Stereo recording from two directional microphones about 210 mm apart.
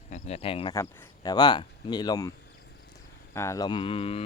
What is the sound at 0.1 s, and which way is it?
Speech, 30° left (ahead or behind).